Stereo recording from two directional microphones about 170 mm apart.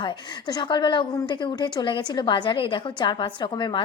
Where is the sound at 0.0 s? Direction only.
25° left (ahead or behind).